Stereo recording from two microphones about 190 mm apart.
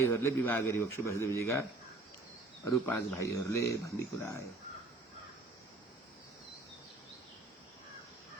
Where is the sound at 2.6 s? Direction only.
15° left (ahead or behind).